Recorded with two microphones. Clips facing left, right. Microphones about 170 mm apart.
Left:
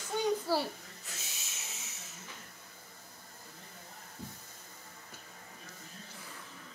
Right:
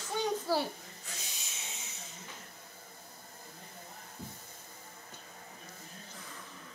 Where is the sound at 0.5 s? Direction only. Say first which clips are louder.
Even; centre (ahead or behind).